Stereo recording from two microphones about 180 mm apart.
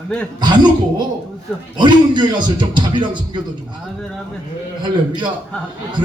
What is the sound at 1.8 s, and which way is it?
A man's voice, 25° right (ahead or behind).